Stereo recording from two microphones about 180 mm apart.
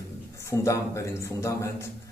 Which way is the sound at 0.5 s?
15° left (ahead or behind).